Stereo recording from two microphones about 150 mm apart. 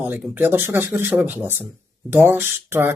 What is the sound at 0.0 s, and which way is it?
Speech, 10° right (ahead or behind).